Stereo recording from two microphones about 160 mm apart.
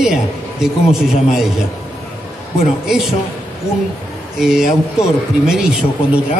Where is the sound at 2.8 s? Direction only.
5° right (ahead or behind).